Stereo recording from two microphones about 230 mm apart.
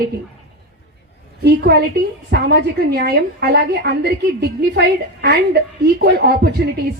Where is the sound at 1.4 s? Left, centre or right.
Right.